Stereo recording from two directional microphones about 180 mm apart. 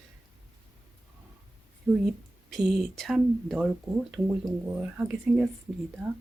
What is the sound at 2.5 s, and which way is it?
Speech, centre (ahead or behind).